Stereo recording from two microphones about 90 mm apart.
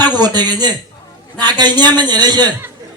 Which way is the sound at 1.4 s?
50° right (ahead or behind).